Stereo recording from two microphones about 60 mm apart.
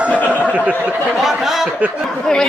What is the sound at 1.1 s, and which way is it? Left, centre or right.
Speech, centre.